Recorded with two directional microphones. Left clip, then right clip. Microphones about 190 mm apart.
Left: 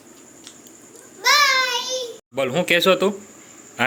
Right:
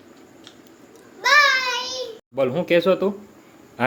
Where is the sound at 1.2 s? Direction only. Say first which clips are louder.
Right 1 dB; 30° right (ahead or behind).